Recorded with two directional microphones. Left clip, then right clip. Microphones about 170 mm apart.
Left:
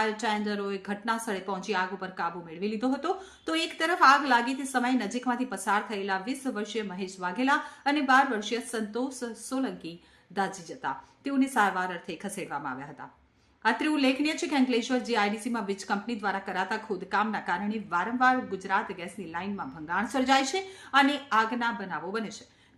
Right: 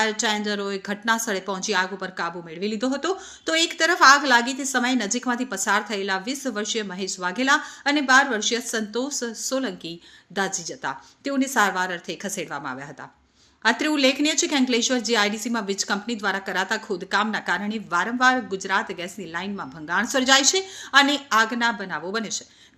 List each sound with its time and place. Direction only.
0.0 s a woman's voice: 20° right (ahead or behind)